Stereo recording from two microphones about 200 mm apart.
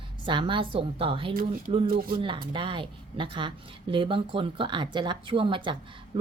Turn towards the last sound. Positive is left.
turn(degrees=-25)  # may be behind; listen again after turning